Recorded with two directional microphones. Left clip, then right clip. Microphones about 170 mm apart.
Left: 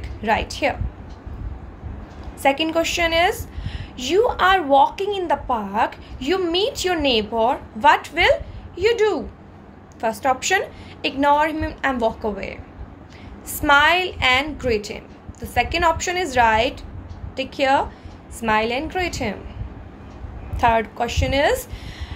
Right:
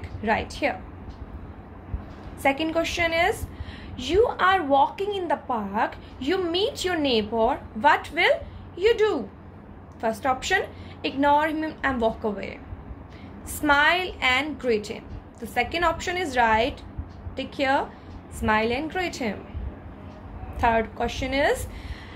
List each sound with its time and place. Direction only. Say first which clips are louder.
0.2 s a woman's voice: left 4 dB; 15° left (ahead or behind)
2.4 s a woman's voice: left 5 dB; 15° left (ahead or behind)
20.5 s a woman's voice: left 4 dB; 15° left (ahead or behind)